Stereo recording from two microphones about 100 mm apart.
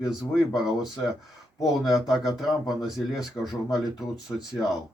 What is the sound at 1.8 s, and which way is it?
Speech, 5° right (ahead or behind).